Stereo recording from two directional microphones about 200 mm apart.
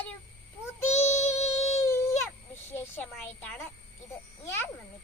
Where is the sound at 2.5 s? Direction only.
10° left (ahead or behind).